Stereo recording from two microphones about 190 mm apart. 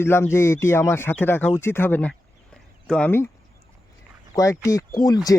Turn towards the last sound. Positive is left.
turn(degrees=20)  # may be behind; listen again after turning